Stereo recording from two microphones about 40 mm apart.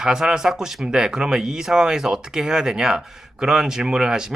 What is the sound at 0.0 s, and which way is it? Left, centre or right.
Speech, centre.